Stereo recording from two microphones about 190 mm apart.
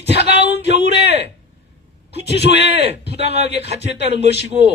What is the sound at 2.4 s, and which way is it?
Speech, 65° left (ahead or behind).